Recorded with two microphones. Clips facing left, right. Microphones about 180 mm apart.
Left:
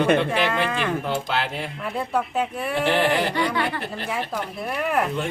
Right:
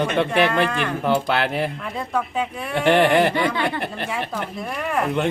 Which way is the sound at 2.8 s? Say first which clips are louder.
Right 6 dB; 60° right (ahead or behind).